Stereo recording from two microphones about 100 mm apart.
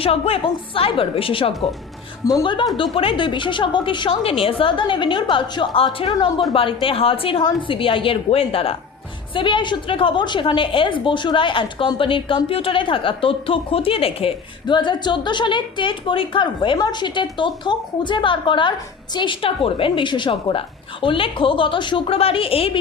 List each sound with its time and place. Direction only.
0.0 s a woman's voice: 70° left (ahead or behind)
2.2 s a woman's voice: 45° left (ahead or behind); by 8.7 s 75° left (ahead or behind)
9.3 s a woman's voice: 55° left (ahead or behind); by 14.3 s 70° left (ahead or behind)
14.7 s a woman's voice: 50° left (ahead or behind); by 22.8 s 70° left (ahead or behind)